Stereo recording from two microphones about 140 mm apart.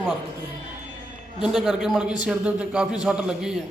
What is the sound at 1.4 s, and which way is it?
Speech, 5° right (ahead or behind).